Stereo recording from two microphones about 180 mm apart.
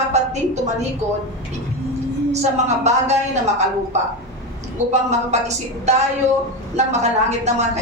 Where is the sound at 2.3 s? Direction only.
40° right (ahead or behind).